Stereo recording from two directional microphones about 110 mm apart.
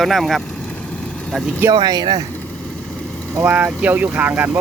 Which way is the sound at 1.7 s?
40° right (ahead or behind).